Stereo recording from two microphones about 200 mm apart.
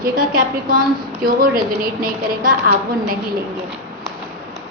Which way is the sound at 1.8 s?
45° right (ahead or behind).